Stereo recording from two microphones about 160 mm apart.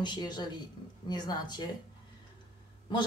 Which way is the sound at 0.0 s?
25° left (ahead or behind).